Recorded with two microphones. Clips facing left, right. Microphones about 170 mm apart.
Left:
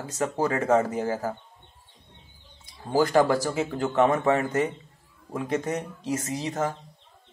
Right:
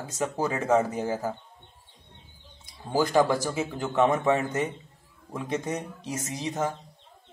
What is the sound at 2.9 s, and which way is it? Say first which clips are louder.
Speech: left 2 dB; 15° right (ahead or behind).